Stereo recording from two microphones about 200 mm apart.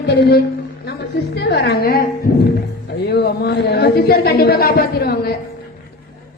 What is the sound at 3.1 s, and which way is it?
A woman's voice, 55° left (ahead or behind).